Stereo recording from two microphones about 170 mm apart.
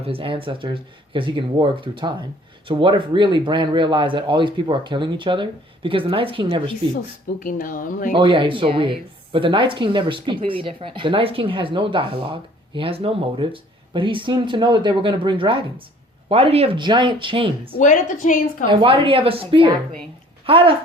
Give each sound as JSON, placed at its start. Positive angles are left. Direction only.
{"t": 0.0, "sound": "speech", "side_deg": -30}
{"t": 7.4, "sound": "speech", "side_deg": 55}
{"t": 8.1, "sound": "speech", "side_deg": -30}
{"t": 17.7, "sound": "speech", "side_deg": 50}
{"t": 18.7, "sound": "speech", "side_deg": -30}